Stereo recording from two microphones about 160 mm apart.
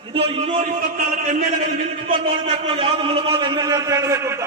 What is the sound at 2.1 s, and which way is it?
A man's voice, 35° right (ahead or behind).